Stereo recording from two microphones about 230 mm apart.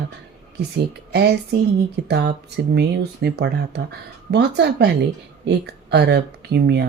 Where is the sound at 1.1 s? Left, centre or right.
Right.